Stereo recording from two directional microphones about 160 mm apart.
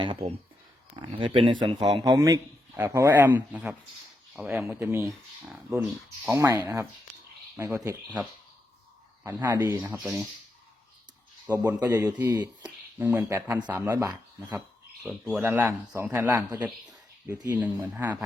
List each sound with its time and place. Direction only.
0.0 s speech: 30° right (ahead or behind)
9.2 s speech: 15° right (ahead or behind)
11.4 s speech: 10° right (ahead or behind)
15.0 s speech: centre (ahead or behind)
15.4 s speech: 15° right (ahead or behind)